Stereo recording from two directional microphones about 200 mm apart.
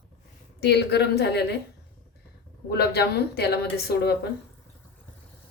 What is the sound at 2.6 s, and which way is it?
Speech, 55° left (ahead or behind).